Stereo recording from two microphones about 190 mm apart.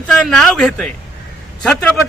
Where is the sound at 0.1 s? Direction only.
5° left (ahead or behind).